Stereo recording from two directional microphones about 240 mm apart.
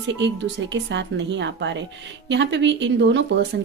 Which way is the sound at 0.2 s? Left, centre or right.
Right.